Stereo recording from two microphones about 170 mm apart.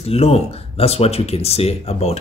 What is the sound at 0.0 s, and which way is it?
Speech, 35° left (ahead or behind).